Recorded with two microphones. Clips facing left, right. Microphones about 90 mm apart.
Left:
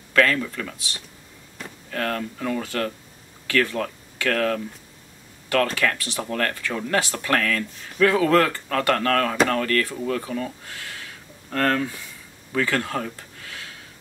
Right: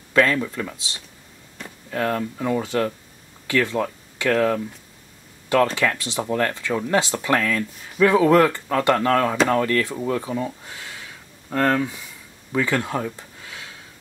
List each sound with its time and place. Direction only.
0.1 s speech: 20° right (ahead or behind)
5.8 s speech: 20° right (ahead or behind)